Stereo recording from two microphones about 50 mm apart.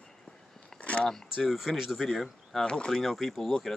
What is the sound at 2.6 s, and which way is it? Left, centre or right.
Speech, centre.